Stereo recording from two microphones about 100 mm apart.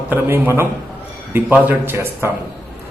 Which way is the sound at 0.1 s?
20° right (ahead or behind).